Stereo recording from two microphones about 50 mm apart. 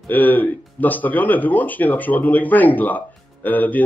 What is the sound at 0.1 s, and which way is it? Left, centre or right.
Speech, left.